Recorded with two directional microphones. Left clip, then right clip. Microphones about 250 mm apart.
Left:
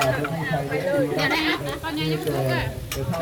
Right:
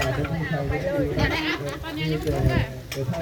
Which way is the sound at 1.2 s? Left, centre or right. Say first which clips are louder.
Left 3 dB; left.